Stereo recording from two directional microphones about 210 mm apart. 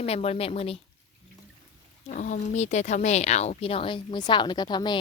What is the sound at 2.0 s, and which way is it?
Speech, 35° left (ahead or behind).